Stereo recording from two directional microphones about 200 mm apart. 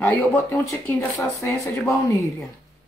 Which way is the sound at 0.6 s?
15° left (ahead or behind).